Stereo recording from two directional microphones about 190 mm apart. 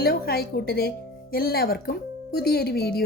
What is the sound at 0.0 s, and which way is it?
Speech, 55° left (ahead or behind).